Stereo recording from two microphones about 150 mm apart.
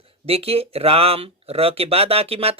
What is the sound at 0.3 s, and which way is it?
Speech, 40° right (ahead or behind).